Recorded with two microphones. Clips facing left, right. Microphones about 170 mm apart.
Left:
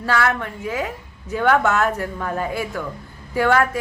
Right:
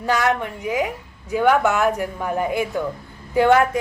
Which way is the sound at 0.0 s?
15° right (ahead or behind).